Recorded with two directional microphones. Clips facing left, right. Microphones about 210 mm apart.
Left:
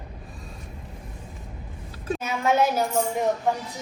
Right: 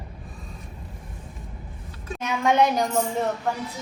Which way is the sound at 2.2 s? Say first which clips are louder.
Right 2 dB; 5° left (ahead or behind).